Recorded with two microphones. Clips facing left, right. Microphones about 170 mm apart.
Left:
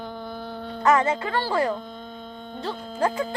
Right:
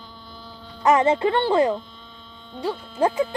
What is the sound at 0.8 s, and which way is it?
Speech, 20° right (ahead or behind).